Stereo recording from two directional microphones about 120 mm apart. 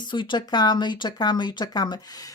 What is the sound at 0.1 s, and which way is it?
Speech, 40° left (ahead or behind).